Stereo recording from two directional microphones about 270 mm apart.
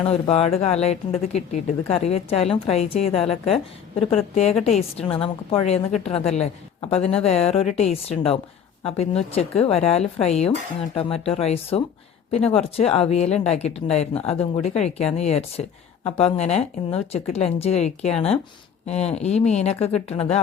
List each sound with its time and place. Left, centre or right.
0.0 s speech: left
4.9 s a woman's voice: left